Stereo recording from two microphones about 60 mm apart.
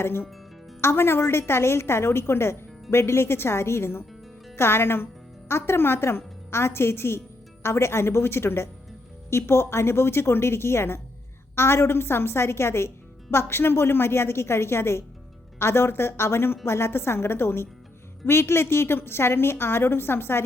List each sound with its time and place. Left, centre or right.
0.0 s a woman's voice: left